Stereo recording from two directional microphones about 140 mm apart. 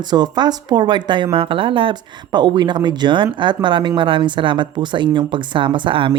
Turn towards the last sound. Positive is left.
turn(degrees=-40)  # may be behind; listen again after turning